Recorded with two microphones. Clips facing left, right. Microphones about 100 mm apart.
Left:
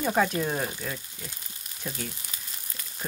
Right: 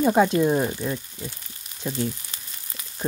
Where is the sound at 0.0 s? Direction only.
20° right (ahead or behind).